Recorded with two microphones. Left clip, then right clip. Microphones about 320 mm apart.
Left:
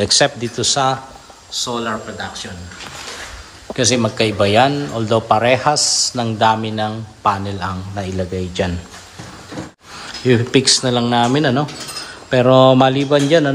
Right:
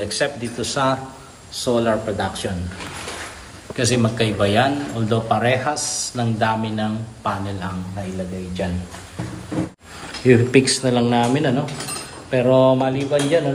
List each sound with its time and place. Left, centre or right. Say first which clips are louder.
0.0 s a man's voice: left 8 dB; centre
3.7 s a man's voice: left 4 dB; centre
10.2 s a man's voice: left 1 dB; centre